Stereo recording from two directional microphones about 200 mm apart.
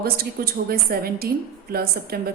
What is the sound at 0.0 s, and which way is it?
A woman's voice, 50° right (ahead or behind).